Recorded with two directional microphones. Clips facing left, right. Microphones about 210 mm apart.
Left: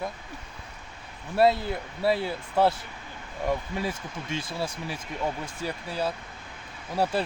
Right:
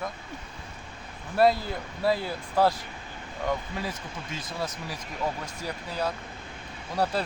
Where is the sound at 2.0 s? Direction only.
25° left (ahead or behind).